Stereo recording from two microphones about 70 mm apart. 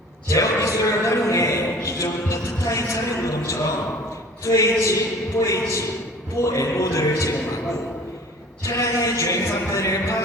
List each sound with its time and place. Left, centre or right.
0.3 s a sound: left
4.4 s music: left
8.6 s music: left